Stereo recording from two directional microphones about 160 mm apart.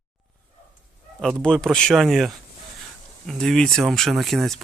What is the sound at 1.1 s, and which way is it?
Speech, 5° right (ahead or behind).